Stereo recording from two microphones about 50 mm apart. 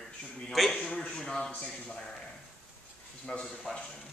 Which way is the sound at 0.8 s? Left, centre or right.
Left.